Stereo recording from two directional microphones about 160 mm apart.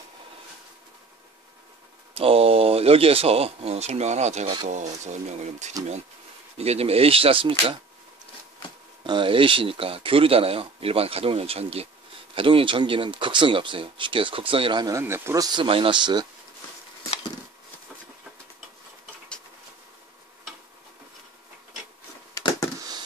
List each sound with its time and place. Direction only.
2.1 s speech: 35° right (ahead or behind)
9.0 s speech: 30° right (ahead or behind)
22.3 s a sound: 20° left (ahead or behind)